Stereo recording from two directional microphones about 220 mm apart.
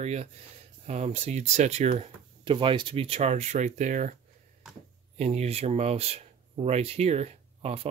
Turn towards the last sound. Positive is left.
turn(degrees=-30)  # may be behind; listen again after turning